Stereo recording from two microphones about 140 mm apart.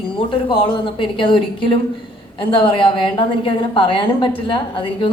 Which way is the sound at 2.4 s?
40° left (ahead or behind).